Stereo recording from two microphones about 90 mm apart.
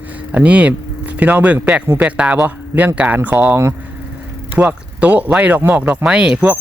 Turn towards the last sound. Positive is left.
turn(degrees=-15)  # may be behind; listen again after turning